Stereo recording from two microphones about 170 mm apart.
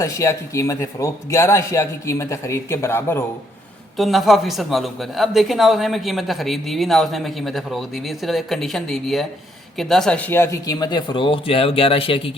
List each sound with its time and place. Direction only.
0.0 s a man's voice: 20° left (ahead or behind)
3.9 s a man's voice: centre (ahead or behind); by 12.3 s 35° left (ahead or behind)